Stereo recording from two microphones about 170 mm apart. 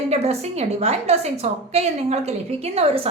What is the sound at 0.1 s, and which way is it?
A woman's voice, 40° right (ahead or behind).